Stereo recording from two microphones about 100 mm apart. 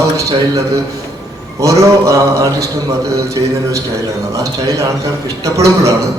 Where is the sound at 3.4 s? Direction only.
50° right (ahead or behind).